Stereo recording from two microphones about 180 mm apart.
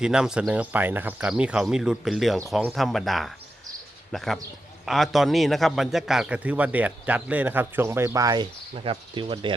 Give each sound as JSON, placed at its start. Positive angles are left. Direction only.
{"t": 0.0, "sound": "a man's voice", "side_deg": -5}
{"t": 8.7, "sound": "speech", "side_deg": -30}